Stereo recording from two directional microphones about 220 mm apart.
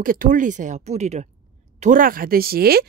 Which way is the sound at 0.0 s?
40° right (ahead or behind).